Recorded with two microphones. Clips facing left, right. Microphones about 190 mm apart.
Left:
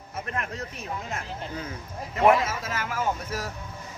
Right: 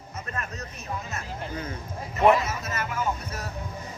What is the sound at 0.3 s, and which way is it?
Speech, 80° left.